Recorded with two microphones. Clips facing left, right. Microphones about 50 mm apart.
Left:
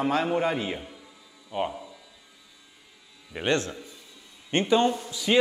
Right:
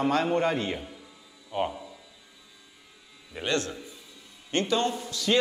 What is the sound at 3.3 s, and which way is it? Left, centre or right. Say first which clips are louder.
A man's voice: left 3 dB; left.